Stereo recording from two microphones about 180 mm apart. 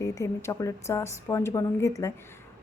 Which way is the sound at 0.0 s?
15° left (ahead or behind).